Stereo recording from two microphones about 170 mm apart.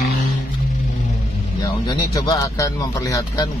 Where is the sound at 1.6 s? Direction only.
25° left (ahead or behind).